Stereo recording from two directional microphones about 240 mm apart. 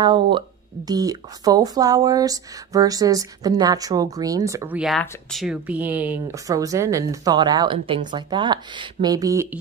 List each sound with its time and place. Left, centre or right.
0.0 s speech: centre